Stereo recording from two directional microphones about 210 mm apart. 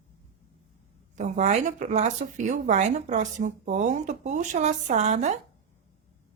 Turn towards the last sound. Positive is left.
turn(degrees=-35)  # may be behind; listen again after turning